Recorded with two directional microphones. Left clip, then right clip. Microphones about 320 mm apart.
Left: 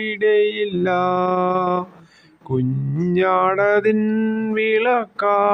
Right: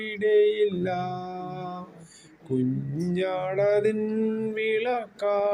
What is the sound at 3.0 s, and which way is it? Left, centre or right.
Mantra, centre.